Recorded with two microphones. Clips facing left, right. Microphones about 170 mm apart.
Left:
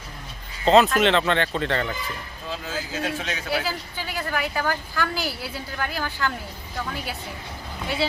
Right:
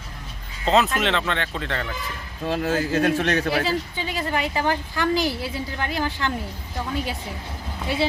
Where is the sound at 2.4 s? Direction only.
60° right (ahead or behind).